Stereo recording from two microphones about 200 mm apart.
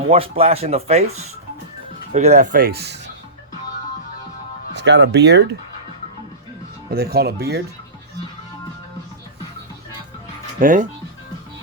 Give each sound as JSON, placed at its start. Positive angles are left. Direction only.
{"t": 0.1, "sound": "speech", "side_deg": -30}
{"t": 4.7, "sound": "speech", "side_deg": -60}
{"t": 6.9, "sound": "speech", "side_deg": -50}
{"t": 10.6, "sound": "speech", "side_deg": -40}